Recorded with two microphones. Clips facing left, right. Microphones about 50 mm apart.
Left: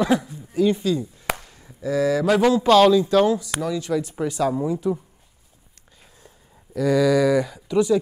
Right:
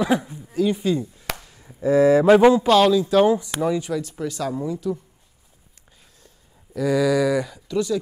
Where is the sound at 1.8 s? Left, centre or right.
Right.